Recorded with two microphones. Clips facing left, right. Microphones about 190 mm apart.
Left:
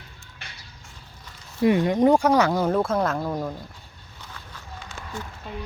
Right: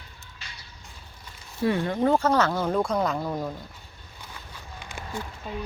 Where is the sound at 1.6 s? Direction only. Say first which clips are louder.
Left 5 dB; 15° left (ahead or behind).